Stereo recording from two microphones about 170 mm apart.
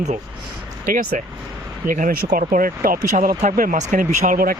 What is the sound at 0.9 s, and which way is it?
Speech, 50° right (ahead or behind).